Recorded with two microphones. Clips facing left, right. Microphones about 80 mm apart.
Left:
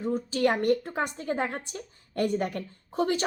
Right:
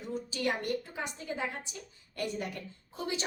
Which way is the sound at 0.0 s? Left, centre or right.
Left.